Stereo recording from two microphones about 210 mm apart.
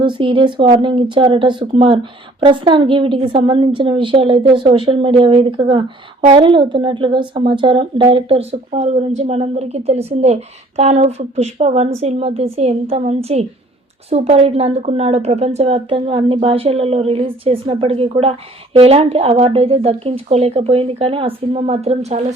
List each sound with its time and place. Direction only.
0.0 s speech: 25° right (ahead or behind)